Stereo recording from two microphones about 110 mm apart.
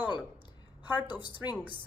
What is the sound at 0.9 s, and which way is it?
Speech, 45° left (ahead or behind).